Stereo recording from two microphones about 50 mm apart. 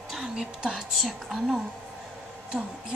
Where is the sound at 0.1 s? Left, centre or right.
Centre.